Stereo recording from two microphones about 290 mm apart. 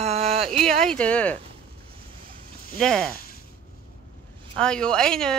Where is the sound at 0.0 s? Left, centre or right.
Right.